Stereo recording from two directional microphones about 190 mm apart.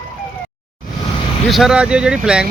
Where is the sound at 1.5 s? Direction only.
Centre (ahead or behind).